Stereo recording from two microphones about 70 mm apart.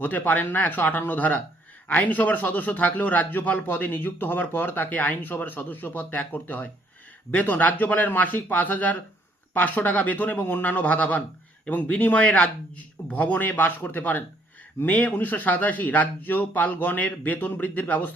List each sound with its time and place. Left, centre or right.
0.0 s a man's voice: left